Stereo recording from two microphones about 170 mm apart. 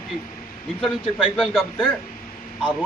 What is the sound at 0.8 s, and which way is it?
Speech, centre (ahead or behind).